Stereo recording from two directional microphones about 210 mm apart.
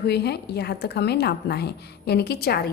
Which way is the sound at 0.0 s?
50° left (ahead or behind).